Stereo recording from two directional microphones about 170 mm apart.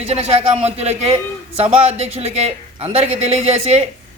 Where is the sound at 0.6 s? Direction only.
40° right (ahead or behind).